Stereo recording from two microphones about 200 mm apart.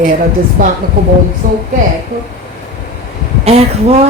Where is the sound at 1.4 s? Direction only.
45° right (ahead or behind).